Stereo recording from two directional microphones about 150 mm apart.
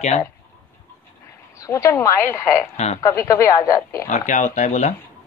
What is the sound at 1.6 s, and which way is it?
A woman's voice, 20° left (ahead or behind).